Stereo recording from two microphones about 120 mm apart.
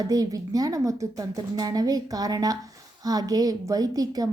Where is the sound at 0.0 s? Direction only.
30° right (ahead or behind).